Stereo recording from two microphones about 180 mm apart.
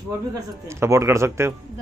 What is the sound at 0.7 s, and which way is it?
Speech, 15° right (ahead or behind).